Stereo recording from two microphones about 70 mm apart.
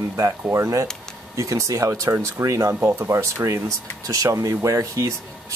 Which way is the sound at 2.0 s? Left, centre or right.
Right.